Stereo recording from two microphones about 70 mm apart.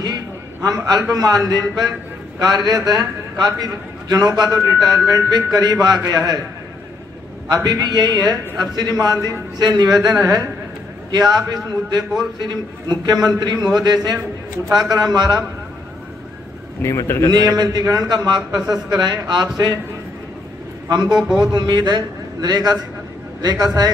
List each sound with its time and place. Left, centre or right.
0.6 s a man's voice: right
7.4 s a man's voice: right
9.6 s a man's voice: right
10.0 s a man's voice: right
11.1 s a man's voice: right
12.4 s a man's voice: right
13.0 s a man's voice: right
14.7 s a man's voice: right
16.8 s speech: left
17.6 s a man's voice: right
21.4 s a man's voice: right